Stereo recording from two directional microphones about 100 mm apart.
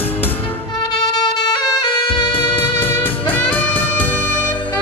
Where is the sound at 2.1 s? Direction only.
60° left (ahead or behind).